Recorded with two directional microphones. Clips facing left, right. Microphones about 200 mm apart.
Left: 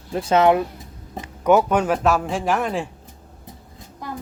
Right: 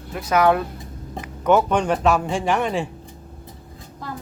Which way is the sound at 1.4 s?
10° left (ahead or behind).